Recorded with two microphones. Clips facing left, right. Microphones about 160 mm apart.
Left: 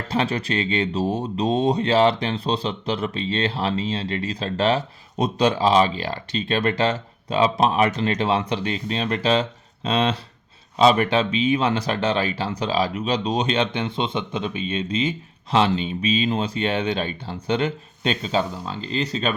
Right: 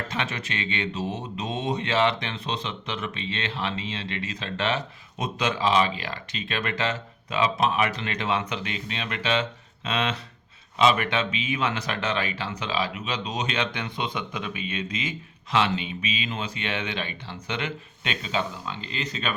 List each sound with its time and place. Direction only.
0.1 s speech: 35° left (ahead or behind)